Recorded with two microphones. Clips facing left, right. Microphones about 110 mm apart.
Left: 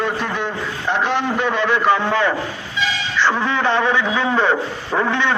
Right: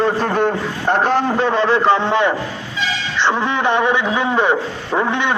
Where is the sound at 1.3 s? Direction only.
30° right (ahead or behind).